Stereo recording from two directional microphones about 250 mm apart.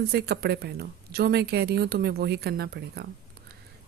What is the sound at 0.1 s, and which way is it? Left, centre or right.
Speech, right.